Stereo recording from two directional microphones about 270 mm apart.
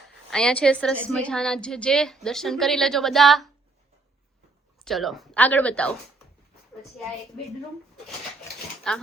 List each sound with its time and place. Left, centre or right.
0.3 s a woman's voice: centre
4.8 s a woman's voice: centre
8.9 s a woman's voice: centre